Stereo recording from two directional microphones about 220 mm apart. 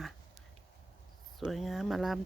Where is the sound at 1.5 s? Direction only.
Centre (ahead or behind).